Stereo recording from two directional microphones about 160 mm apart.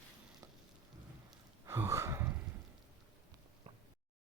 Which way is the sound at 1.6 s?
20° right (ahead or behind).